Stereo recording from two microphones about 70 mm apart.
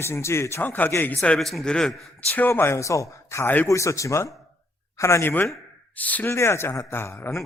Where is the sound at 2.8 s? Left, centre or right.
Left.